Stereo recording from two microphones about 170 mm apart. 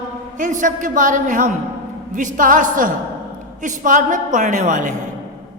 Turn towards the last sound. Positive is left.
turn(degrees=-45)  # may be behind; listen again after turning